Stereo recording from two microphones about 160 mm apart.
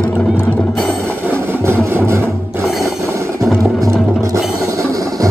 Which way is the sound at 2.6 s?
Centre (ahead or behind).